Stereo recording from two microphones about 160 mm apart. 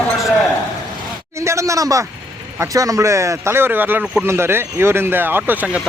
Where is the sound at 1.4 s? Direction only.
20° right (ahead or behind).